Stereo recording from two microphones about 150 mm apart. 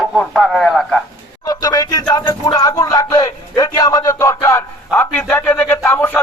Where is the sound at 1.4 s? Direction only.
25° left (ahead or behind).